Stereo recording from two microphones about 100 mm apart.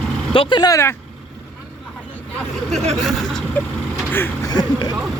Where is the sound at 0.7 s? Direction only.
25° left (ahead or behind).